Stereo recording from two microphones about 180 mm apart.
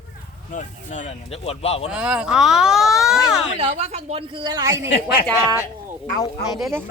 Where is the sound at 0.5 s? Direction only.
40° left (ahead or behind).